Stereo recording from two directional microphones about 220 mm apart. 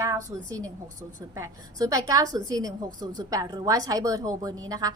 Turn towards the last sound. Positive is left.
turn(degrees=-15)  # may be behind; listen again after turning